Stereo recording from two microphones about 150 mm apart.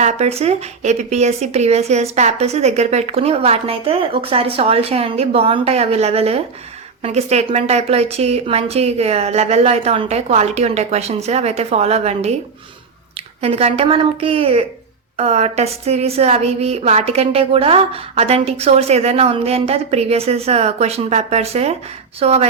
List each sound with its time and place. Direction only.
0.0 s a woman's voice: 45° right (ahead or behind)
13.4 s a woman's voice: 40° right (ahead or behind)